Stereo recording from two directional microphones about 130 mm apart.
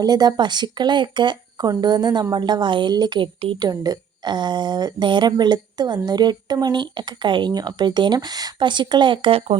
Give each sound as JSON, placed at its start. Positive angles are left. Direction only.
{"t": 0.0, "sound": "a woman's voice", "side_deg": -30}